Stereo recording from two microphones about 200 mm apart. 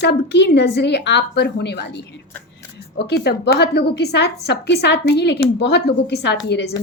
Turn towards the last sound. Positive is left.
turn(degrees=55)  # may be behind; listen again after turning